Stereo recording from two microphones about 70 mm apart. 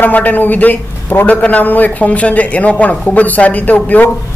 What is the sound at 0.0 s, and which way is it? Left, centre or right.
A man's voice, left.